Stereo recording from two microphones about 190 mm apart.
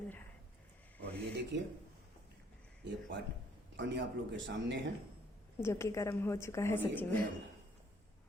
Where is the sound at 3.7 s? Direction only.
70° right (ahead or behind).